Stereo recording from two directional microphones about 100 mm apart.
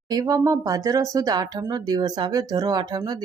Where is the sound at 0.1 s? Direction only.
40° right (ahead or behind).